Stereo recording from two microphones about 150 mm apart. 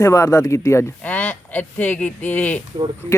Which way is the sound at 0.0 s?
20° left (ahead or behind).